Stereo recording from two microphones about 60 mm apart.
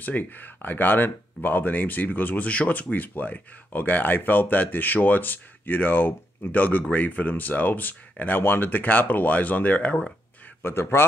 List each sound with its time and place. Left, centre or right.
0.0 s speech: left
10.6 s a man's voice: left